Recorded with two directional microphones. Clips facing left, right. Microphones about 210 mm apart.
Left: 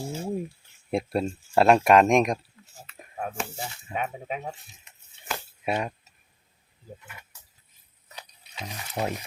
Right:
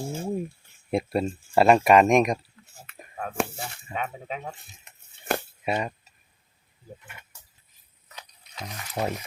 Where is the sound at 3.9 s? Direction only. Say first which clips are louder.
Left 1 dB; 10° left (ahead or behind).